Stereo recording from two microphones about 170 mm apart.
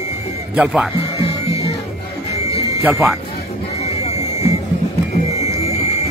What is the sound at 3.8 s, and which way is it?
Music, 40° left (ahead or behind).